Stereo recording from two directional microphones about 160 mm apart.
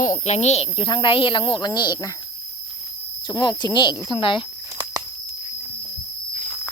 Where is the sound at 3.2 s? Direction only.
25° left (ahead or behind).